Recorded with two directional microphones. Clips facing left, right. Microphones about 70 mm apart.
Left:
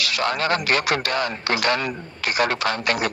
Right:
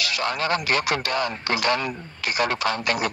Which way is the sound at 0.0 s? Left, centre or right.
Left.